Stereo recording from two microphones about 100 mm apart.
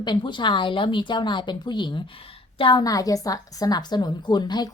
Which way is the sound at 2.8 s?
40° left (ahead or behind).